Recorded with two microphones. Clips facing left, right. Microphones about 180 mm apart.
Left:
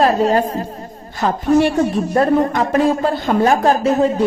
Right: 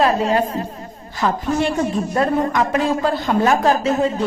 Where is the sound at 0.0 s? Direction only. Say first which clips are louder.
Left 3 dB; 40° left (ahead or behind).